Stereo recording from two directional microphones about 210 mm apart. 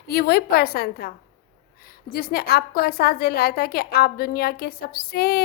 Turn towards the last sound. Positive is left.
turn(degrees=45)  # may be behind; listen again after turning